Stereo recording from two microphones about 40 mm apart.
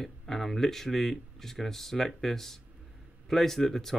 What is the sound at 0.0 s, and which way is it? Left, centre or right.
Speech, centre.